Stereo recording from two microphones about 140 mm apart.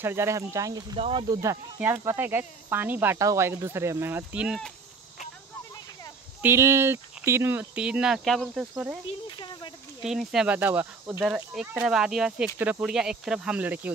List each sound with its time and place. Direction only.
0.0 s speech: 15° right (ahead or behind)
0.9 s speech: 45° right (ahead or behind)
1.2 s speech: 25° right (ahead or behind); by 4.6 s 10° right (ahead or behind)
6.4 s speech: 20° right (ahead or behind)
9.4 s speech: 35° left (ahead or behind)
10.0 s speech: 5° right (ahead or behind)